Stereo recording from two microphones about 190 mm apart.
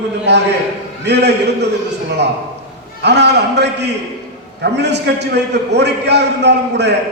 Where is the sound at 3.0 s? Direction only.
65° right (ahead or behind).